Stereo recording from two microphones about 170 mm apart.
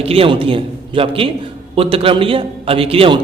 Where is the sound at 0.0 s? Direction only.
35° right (ahead or behind).